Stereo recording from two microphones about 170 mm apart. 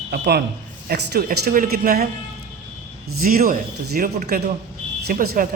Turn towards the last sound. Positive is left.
turn(degrees=-55)  # may be behind; listen again after turning